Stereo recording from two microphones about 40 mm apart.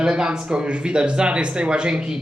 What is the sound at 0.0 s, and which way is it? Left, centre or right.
Speech, centre.